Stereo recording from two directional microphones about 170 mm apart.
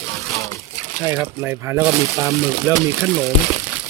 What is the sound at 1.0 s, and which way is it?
Speech, 10° right (ahead or behind).